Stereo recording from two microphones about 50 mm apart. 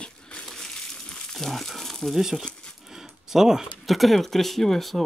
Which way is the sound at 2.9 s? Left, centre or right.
Centre.